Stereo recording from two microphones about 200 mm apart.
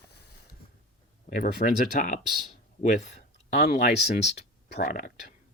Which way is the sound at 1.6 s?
45° left (ahead or behind).